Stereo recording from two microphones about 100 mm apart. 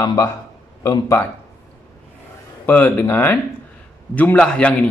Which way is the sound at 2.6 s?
20° left (ahead or behind).